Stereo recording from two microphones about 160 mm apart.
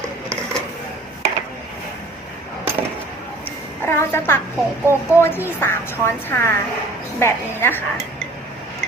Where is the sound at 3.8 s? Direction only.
15° left (ahead or behind).